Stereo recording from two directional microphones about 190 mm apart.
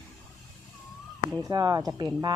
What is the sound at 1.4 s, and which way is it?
Speech, 20° right (ahead or behind).